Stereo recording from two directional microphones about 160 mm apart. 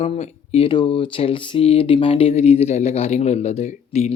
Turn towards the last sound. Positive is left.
turn(degrees=40)  # may be behind; listen again after turning